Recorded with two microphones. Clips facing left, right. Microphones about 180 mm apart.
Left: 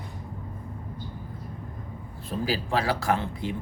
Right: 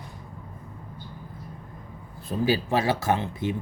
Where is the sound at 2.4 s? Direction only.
25° right (ahead or behind).